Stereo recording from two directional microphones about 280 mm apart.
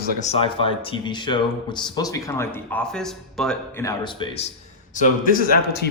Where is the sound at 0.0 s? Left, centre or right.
Left.